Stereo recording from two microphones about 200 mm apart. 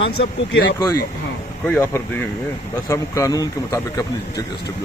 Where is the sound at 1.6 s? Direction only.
10° left (ahead or behind).